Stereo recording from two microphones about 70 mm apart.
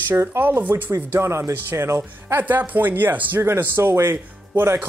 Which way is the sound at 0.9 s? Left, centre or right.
Right.